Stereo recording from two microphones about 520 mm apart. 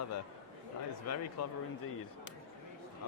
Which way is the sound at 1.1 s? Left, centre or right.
Left.